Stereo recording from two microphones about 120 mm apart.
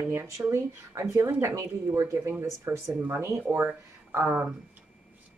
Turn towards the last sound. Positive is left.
turn(degrees=-15)  # may be behind; listen again after turning